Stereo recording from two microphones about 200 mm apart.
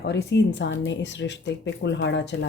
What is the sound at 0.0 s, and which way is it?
Speech, 60° left (ahead or behind).